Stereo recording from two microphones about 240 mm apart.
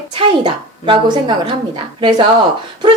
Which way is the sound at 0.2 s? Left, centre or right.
Right.